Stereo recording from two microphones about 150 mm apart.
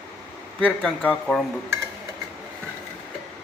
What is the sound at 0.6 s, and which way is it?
Speech, 10° left (ahead or behind).